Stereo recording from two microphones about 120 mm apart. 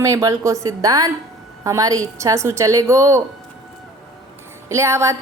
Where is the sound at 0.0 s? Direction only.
25° right (ahead or behind).